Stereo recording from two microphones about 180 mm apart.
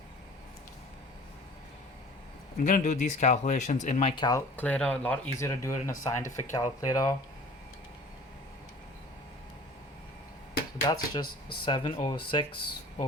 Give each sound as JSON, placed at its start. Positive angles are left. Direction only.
{"t": 2.6, "sound": "speech", "side_deg": 45}
{"t": 4.1, "sound": "speech", "side_deg": 20}
{"t": 4.5, "sound": "speech", "side_deg": 10}
{"t": 10.8, "sound": "speech", "side_deg": 20}